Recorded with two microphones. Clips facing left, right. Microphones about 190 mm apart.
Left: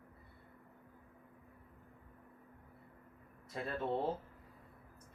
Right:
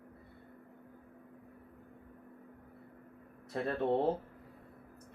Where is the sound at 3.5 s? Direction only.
50° right (ahead or behind).